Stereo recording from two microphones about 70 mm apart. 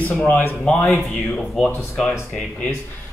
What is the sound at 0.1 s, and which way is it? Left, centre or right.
Speech, left.